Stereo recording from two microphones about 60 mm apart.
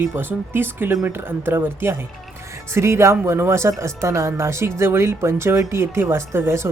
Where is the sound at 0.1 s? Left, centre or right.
Right.